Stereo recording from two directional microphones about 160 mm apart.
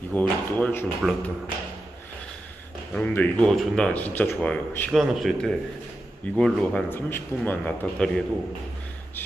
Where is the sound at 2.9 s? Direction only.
10° left (ahead or behind).